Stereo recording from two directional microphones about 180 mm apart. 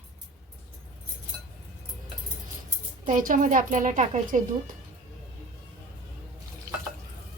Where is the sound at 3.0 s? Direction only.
50° right (ahead or behind).